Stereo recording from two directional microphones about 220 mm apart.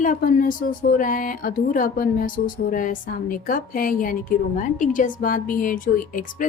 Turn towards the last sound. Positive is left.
turn(degrees=35)  # may be behind; listen again after turning